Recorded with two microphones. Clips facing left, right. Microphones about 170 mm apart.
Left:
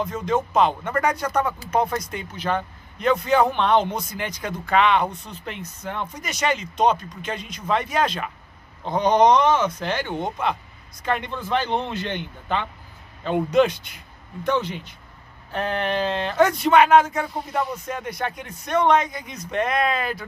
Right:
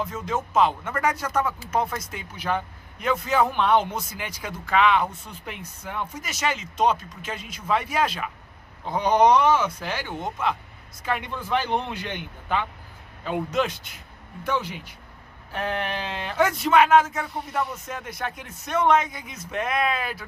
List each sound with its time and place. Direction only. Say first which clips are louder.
0.0 s a man's voice: left 5 dB; 5° right (ahead or behind)